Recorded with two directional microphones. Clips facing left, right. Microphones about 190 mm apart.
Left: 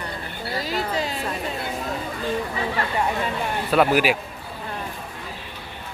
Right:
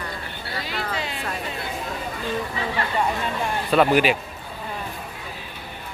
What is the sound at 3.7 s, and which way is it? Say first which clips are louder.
Speech: right 1 dB; 5° left (ahead or behind).